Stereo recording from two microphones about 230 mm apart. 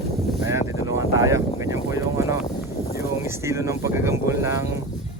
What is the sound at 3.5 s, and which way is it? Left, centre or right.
Speech, centre.